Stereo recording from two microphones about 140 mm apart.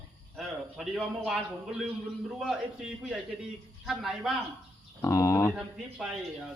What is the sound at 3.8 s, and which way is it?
Speech, 5° right (ahead or behind).